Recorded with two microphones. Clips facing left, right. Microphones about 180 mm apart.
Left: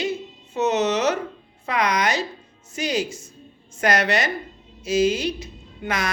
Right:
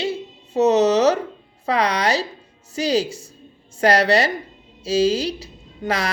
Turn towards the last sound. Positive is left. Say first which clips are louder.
# right 3 dB
turn(degrees=-35)  # may be behind; listen again after turning